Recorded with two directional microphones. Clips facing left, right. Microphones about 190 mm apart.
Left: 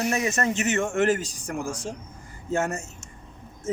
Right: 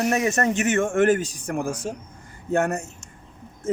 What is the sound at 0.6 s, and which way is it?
Speech, 55° right (ahead or behind).